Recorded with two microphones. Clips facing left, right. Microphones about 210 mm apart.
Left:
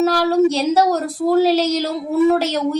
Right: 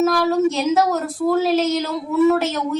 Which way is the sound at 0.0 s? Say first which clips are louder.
Left 2 dB; 35° left (ahead or behind).